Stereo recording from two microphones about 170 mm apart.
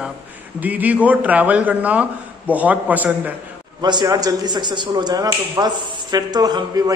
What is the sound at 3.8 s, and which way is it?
A man's voice, 25° right (ahead or behind).